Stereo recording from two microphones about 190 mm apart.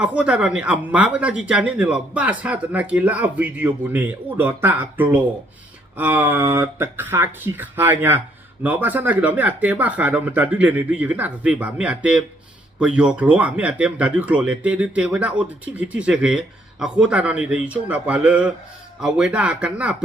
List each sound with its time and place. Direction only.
0.0 s speech: 5° right (ahead or behind)